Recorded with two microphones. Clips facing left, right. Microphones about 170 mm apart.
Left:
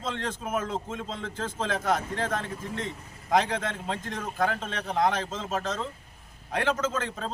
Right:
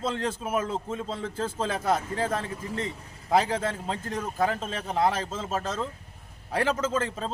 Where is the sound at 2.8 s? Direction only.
5° right (ahead or behind).